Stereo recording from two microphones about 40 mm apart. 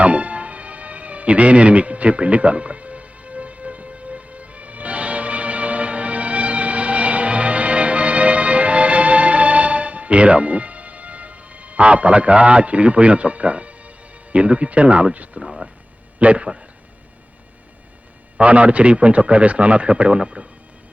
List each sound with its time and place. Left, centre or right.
0.0 s music: right
14.3 s a man's voice: right
15.4 s speech: centre
16.1 s a man's voice: right
18.3 s a man's voice: right